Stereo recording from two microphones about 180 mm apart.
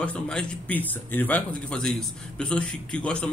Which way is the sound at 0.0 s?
5° left (ahead or behind).